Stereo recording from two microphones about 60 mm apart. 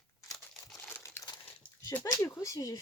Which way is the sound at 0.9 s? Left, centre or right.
Left.